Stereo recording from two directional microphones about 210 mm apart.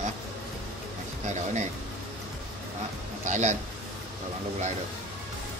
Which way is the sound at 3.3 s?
35° right (ahead or behind).